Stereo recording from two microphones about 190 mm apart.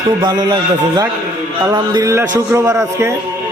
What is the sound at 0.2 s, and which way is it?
A man's voice, 20° right (ahead or behind).